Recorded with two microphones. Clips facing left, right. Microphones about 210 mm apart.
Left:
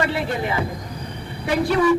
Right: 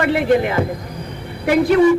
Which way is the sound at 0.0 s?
60° right (ahead or behind).